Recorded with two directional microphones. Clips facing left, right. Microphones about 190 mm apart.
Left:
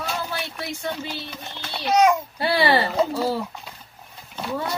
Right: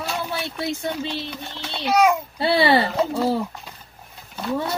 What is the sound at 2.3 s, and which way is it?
Speech, 25° right (ahead or behind).